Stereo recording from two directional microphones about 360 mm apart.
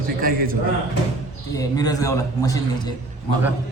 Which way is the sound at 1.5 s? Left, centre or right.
Centre.